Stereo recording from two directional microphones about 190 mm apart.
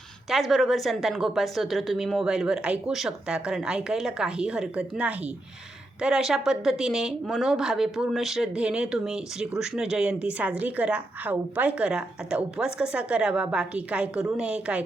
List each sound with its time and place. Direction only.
0.3 s a woman's voice: centre (ahead or behind)